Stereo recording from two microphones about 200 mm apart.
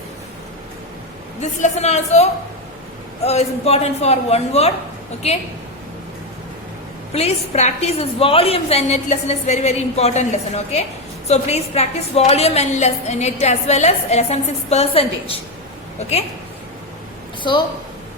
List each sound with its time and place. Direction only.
1.4 s a woman's voice: 35° left (ahead or behind)
7.1 s a woman's voice: 30° left (ahead or behind)
17.5 s a woman's voice: 20° left (ahead or behind)